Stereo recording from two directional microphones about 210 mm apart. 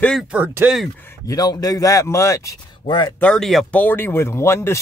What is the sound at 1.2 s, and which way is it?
A man's voice, 15° left (ahead or behind).